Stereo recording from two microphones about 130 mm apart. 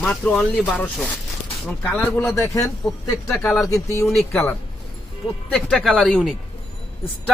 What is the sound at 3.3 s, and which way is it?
Speech, 10° left (ahead or behind).